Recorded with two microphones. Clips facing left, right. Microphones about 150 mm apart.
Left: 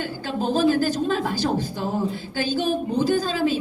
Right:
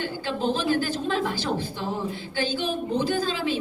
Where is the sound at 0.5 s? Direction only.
45° left (ahead or behind).